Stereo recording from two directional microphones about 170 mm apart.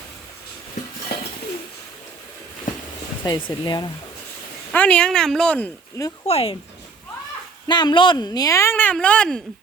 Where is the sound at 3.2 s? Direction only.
25° left (ahead or behind).